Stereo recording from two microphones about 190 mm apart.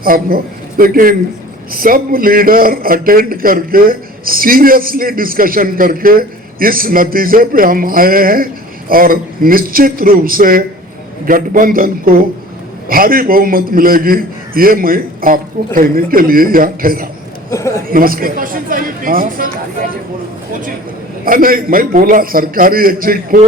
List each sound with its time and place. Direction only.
0.0 s a man's voice: 50° right (ahead or behind)
17.5 s a sound: 15° left (ahead or behind)
17.9 s speech: 50° right (ahead or behind)
21.2 s a man's voice: 50° right (ahead or behind)